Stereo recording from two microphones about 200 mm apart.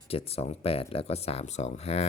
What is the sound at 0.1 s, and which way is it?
Speech, 30° left (ahead or behind).